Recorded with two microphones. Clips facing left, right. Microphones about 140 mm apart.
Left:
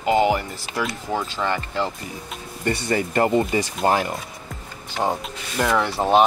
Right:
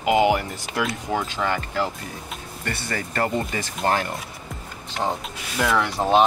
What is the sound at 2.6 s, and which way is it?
Speech, 15° left (ahead or behind).